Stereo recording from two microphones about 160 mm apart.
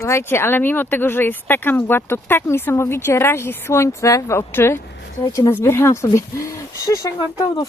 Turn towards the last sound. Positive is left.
turn(degrees=20)  # may be behind; listen again after turning